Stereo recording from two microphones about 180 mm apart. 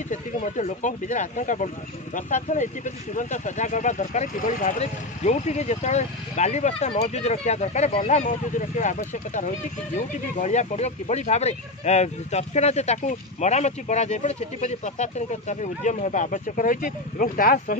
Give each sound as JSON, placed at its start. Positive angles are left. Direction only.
{"t": 0.1, "sound": "speech", "side_deg": 45}